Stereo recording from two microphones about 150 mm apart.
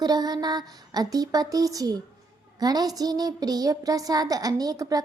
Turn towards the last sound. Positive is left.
turn(degrees=-25)  # may be behind; listen again after turning